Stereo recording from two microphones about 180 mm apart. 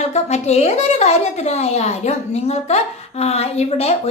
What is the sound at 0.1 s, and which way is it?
A woman's voice, 35° left (ahead or behind).